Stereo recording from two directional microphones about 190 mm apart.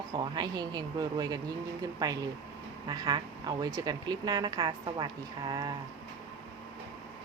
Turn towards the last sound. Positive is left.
turn(degrees=-20)  # may be behind; listen again after turning